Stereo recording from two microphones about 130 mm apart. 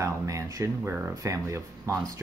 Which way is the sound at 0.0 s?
25° right (ahead or behind).